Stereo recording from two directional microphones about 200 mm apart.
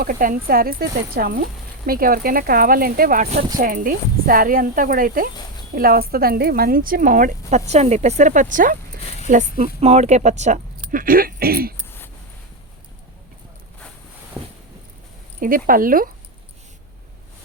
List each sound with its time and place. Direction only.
0.0 s speech: 45° right (ahead or behind)
15.4 s speech: 45° right (ahead or behind)